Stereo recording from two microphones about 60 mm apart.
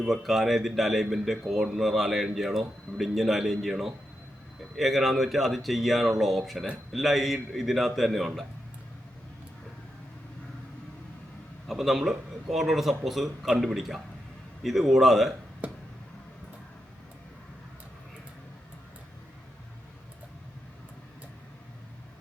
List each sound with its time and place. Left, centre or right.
0.0 s a man's voice: centre
11.7 s a man's voice: centre
15.6 s a sound: right